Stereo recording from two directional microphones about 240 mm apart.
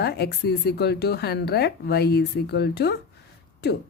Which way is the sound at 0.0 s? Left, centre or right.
Left.